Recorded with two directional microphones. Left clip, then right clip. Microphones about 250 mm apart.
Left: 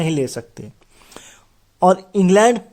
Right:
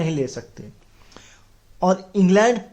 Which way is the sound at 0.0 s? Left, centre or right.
Left.